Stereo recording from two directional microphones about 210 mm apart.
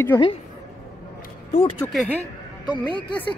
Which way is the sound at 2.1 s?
20° left (ahead or behind).